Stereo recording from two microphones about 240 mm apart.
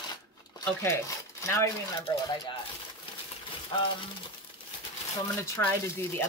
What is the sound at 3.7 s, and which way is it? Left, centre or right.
Speech, centre.